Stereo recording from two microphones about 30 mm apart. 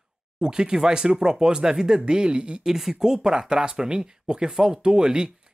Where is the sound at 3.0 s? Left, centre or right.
Right.